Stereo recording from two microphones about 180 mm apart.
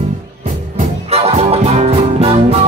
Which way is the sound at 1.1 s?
35° right (ahead or behind).